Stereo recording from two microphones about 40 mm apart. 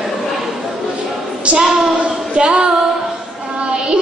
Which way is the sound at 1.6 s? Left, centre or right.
Centre.